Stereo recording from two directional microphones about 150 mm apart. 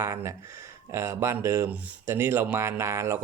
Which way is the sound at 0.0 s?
20° right (ahead or behind).